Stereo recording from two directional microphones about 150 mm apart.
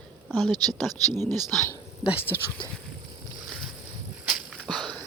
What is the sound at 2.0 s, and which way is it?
Speech, 10° right (ahead or behind).